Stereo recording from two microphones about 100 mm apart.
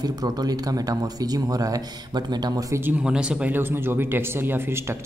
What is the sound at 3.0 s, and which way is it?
Speech, 10° right (ahead or behind).